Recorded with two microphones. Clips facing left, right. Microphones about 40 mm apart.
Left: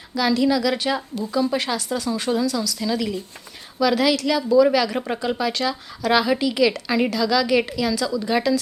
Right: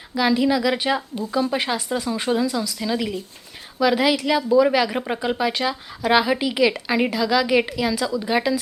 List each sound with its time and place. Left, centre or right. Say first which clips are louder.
0.1 s a woman's voice: even; centre